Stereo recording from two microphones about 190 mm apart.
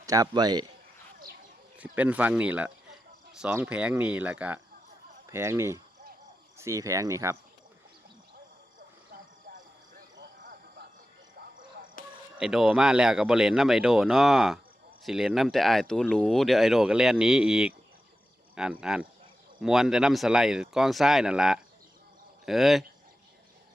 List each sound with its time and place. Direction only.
0.0 s a man's voice: 20° right (ahead or behind)
1.8 s speech: 5° right (ahead or behind)
9.5 s a sound: 55° right (ahead or behind)
12.4 s speech: 5° right (ahead or behind)